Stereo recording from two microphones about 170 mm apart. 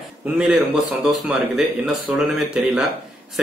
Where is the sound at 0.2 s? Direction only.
5° right (ahead or behind).